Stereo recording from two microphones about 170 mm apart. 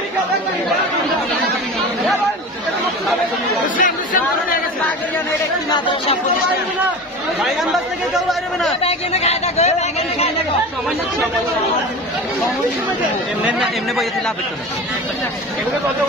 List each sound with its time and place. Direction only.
3.6 s a sound: 50° left (ahead or behind)
8.3 s speech: centre (ahead or behind)
8.8 s speech: 40° left (ahead or behind)
13.5 s speech: 5° right (ahead or behind)